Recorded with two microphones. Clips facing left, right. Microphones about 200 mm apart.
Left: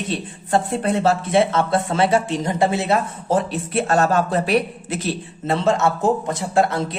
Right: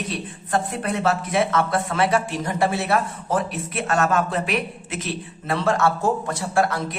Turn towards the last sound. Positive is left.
turn(degrees=25)  # may be behind; listen again after turning